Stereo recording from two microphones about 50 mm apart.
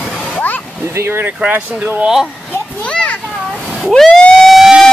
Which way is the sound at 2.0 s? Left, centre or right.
Centre.